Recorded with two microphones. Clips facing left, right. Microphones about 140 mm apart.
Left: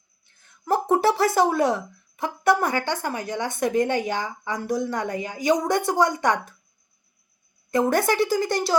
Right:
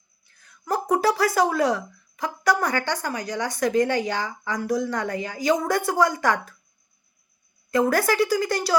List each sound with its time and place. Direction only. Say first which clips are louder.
0.3 s a sound: left 3 dB; 25° left (ahead or behind)
2.2 s a woman's voice: left 2 dB; 25° left (ahead or behind)
7.7 s a woman's voice: even; 20° left (ahead or behind)